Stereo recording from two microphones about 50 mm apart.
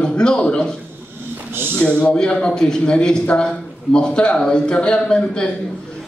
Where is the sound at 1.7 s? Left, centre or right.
Left.